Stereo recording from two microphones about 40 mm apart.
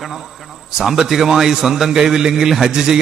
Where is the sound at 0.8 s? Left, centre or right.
Centre.